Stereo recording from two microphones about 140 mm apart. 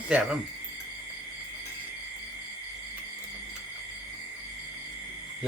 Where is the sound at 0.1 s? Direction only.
10° right (ahead or behind).